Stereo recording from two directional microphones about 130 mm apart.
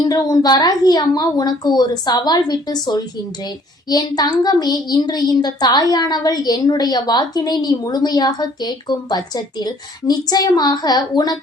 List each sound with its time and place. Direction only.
0.0 s a child's voice: 30° left (ahead or behind)